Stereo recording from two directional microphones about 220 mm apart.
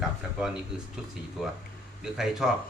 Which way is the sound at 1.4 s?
Centre (ahead or behind).